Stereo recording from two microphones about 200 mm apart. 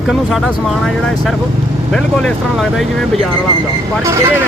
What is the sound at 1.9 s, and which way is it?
Speech, centre (ahead or behind).